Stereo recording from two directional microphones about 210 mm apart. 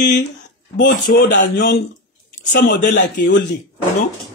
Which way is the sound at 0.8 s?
40° left (ahead or behind).